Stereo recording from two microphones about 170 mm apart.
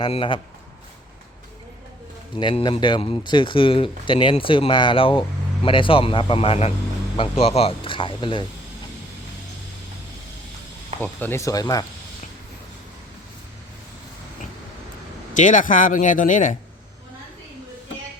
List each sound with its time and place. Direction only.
0.0 s speech: 30° left (ahead or behind)
2.4 s speech: 30° left (ahead or behind)
11.0 s speech: 10° left (ahead or behind)
15.4 s speech: 50° left (ahead or behind)